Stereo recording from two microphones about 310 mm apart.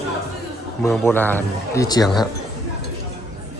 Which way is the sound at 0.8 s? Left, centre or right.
Centre.